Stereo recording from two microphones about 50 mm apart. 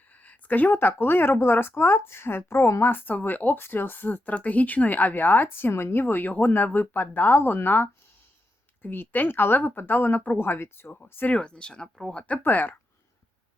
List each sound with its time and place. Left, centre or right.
0.1 s speech: left
2.9 s speech: left
10.3 s speech: left
11.3 s speech: centre
12.4 s speech: left